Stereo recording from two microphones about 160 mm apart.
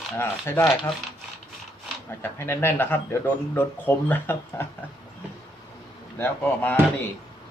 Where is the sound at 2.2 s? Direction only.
15° left (ahead or behind).